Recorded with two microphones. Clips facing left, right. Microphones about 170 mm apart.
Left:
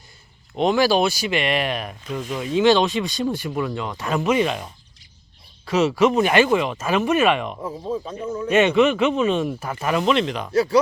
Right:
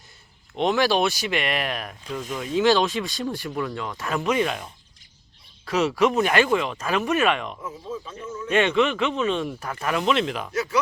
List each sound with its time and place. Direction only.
0.5 s speech: centre (ahead or behind)
5.6 s speech: centre (ahead or behind)
7.6 s speech: 35° left (ahead or behind)
8.4 s speech: 10° left (ahead or behind)
10.5 s speech: 30° left (ahead or behind)